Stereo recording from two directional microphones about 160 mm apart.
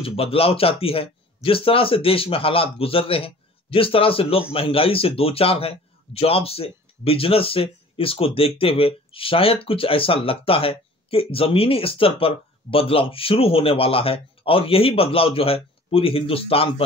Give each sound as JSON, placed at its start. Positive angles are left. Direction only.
{"t": 0.0, "sound": "a man's voice", "side_deg": 35}